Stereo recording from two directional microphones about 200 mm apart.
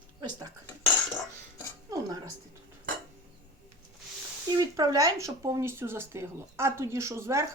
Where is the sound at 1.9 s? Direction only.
20° right (ahead or behind).